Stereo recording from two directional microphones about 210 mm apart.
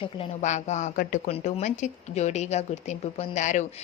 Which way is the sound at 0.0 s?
30° left (ahead or behind).